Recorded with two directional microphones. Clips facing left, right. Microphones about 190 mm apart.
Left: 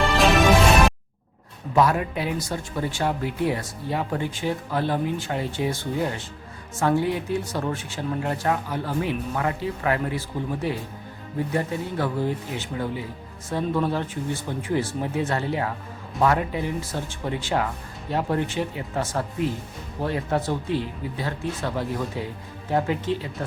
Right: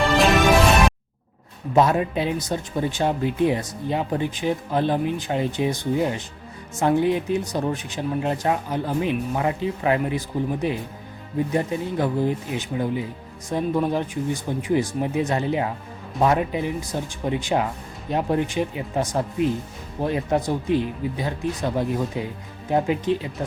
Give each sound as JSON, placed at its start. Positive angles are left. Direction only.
{"t": 0.1, "sound": "music", "side_deg": 0}
{"t": 1.7, "sound": "speech", "side_deg": -25}